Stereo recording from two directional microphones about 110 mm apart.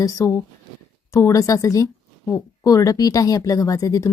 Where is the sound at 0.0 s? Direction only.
25° left (ahead or behind).